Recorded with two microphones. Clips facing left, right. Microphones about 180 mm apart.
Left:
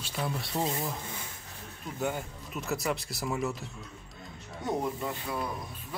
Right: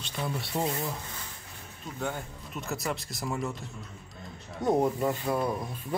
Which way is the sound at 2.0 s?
Centre (ahead or behind).